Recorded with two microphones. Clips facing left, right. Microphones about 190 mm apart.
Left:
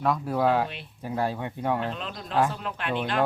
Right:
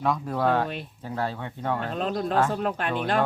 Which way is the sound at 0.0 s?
5° left (ahead or behind).